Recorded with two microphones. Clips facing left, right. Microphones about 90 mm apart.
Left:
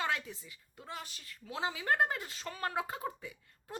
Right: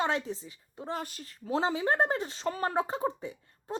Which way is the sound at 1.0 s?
45° right (ahead or behind).